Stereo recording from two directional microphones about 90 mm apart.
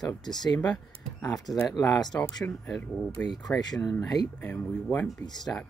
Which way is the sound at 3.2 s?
50° left (ahead or behind).